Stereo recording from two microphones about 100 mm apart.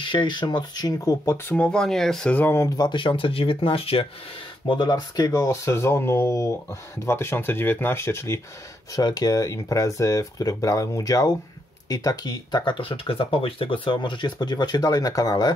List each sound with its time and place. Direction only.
0.0 s speech: 50° left (ahead or behind); by 1.7 s 20° left (ahead or behind)
1.7 s speech: 5° left (ahead or behind)
2.3 s speech: 20° left (ahead or behind)
2.9 s speech: 55° left (ahead or behind)
4.6 s speech: 45° left (ahead or behind); by 8.4 s 30° left (ahead or behind)
8.9 s speech: 40° left (ahead or behind)